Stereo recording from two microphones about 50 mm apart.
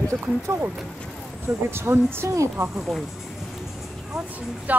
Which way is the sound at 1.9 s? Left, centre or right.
Right.